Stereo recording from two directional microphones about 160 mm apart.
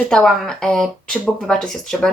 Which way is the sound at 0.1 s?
5° left (ahead or behind).